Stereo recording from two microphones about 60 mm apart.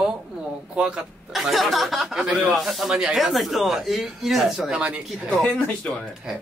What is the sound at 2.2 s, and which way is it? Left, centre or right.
Speech, centre.